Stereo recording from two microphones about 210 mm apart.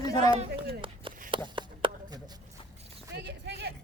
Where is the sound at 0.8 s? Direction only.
25° right (ahead or behind).